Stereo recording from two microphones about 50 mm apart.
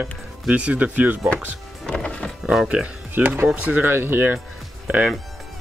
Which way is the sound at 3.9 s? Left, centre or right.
Right.